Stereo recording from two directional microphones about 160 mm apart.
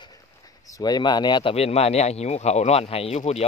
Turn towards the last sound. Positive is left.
turn(degrees=40)  # may be behind; listen again after turning